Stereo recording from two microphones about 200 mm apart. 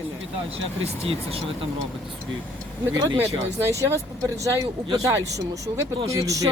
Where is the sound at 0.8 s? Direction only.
30° right (ahead or behind).